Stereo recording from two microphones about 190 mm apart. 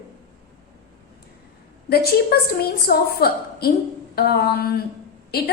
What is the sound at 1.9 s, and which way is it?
A woman's voice, 55° left (ahead or behind).